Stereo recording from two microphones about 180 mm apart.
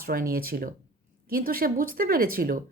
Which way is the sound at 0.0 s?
55° right (ahead or behind).